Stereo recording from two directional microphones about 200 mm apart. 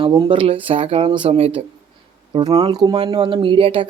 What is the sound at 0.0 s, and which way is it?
Speech, 20° right (ahead or behind).